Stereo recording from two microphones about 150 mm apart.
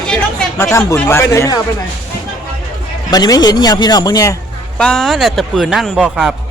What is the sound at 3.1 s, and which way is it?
A man's voice, 25° left (ahead or behind).